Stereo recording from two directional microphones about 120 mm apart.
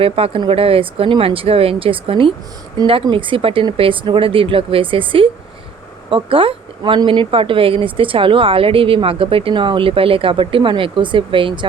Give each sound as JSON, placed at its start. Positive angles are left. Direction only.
{"t": 0.0, "sound": "speech", "side_deg": -50}